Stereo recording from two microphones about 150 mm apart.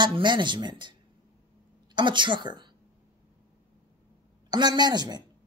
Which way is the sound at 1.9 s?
30° right (ahead or behind).